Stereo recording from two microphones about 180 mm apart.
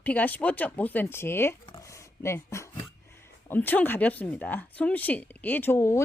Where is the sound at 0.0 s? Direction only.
10° left (ahead or behind).